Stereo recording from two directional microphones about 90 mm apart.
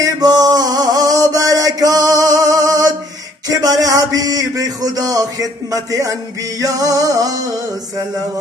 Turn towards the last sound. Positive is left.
turn(degrees=-40)  # may be behind; listen again after turning